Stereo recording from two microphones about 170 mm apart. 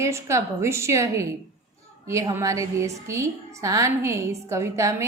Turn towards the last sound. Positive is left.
turn(degrees=-15)  # may be behind; listen again after turning